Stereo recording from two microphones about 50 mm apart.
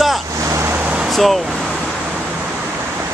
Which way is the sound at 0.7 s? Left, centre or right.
Right.